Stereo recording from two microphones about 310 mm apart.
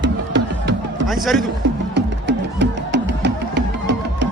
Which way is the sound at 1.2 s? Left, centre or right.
Centre.